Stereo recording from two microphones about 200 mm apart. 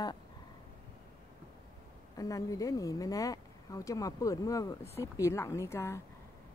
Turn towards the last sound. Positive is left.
turn(degrees=15)  # may be behind; listen again after turning